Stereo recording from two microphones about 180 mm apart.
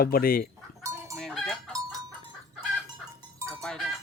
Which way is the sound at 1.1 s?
Centre (ahead or behind).